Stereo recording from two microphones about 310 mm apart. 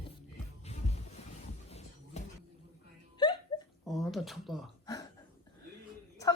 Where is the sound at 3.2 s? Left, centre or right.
Centre.